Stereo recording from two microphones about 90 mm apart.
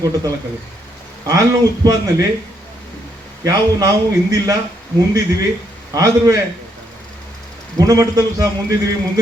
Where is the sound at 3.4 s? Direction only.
45° right (ahead or behind).